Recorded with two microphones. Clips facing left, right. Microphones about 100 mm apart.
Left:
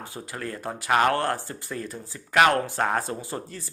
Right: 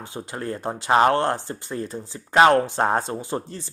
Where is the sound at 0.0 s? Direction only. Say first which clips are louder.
Right 3 dB; 25° right (ahead or behind).